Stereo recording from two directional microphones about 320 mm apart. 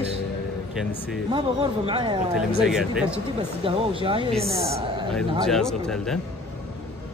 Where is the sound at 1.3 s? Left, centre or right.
Centre.